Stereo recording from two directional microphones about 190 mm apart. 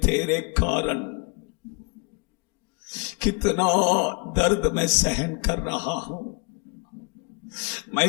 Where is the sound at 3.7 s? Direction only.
40° left (ahead or behind).